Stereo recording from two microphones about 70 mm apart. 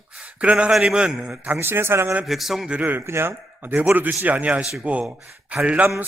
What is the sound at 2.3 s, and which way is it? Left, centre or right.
Speech, centre.